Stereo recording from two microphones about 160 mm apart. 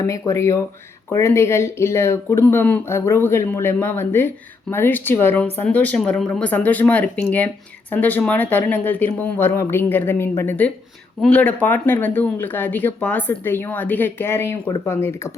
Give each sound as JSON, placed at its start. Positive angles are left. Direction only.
{"t": 0.0, "sound": "speech", "side_deg": 20}